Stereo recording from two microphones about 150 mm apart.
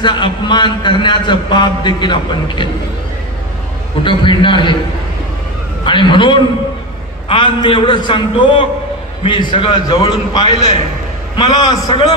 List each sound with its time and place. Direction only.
0.0 s a man's voice: 30° left (ahead or behind)
4.0 s a man's voice: 35° left (ahead or behind)
5.9 s a man's voice: 30° left (ahead or behind)